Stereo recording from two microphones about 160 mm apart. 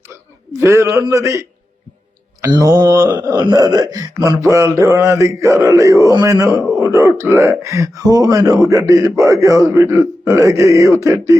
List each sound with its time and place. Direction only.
0.6 s speech: 15° right (ahead or behind)
2.5 s speech: 25° right (ahead or behind)